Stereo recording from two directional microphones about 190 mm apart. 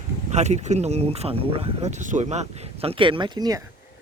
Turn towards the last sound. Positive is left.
turn(degrees=-20)  # may be behind; listen again after turning